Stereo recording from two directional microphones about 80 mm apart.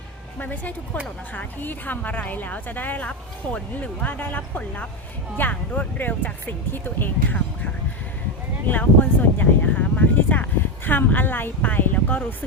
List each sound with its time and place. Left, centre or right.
0.3 s a woman's voice: left